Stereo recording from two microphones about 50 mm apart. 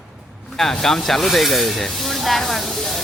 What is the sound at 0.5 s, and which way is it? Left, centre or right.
Speech, centre.